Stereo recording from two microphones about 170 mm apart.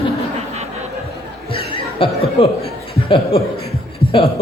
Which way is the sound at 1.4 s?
30° left (ahead or behind).